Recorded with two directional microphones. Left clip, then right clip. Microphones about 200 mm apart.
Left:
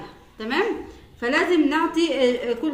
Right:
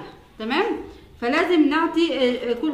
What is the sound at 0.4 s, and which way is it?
A woman's voice, 15° right (ahead or behind).